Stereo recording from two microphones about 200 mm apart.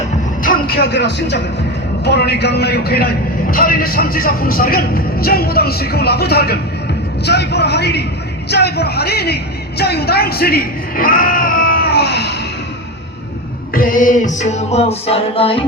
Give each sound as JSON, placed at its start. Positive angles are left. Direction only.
{"t": 0.4, "sound": "a man's voice", "side_deg": 45}
{"t": 13.7, "sound": "music", "side_deg": 45}